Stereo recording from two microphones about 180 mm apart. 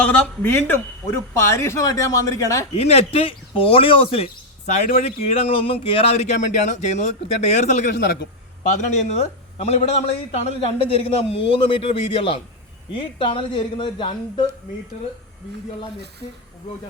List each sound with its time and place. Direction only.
0.0 s speech: 5° left (ahead or behind)
2.7 s a man's voice: 35° left (ahead or behind)
7.9 s a man's voice: 65° left (ahead or behind)
8.9 s a man's voice: 40° left (ahead or behind)